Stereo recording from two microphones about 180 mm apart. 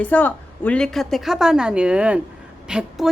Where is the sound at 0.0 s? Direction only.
10° left (ahead or behind).